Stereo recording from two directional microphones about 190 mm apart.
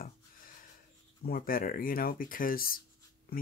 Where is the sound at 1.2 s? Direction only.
50° left (ahead or behind).